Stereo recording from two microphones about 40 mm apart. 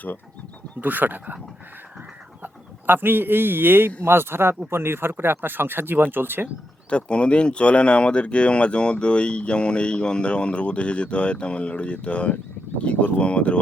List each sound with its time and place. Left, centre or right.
0.8 s speech: right
2.4 s speech: right
6.9 s speech: left